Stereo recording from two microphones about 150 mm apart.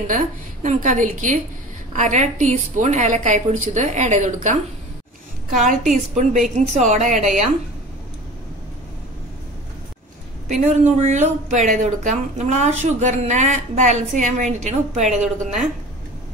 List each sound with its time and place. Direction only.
0.0 s a woman's voice: 60° right (ahead or behind)
6.1 s speech: 55° right (ahead or behind)
10.7 s speech: 55° right (ahead or behind)